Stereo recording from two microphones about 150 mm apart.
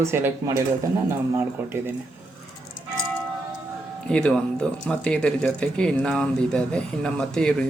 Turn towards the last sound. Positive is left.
turn(degrees=5)  # may be behind; listen again after turning